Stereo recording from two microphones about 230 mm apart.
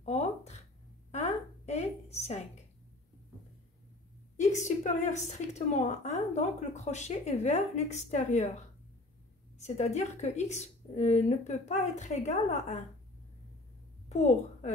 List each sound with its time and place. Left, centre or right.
0.0 s a sound: left
4.4 s a woman's voice: left
9.6 s a woman's voice: left
14.0 s a child's voice: left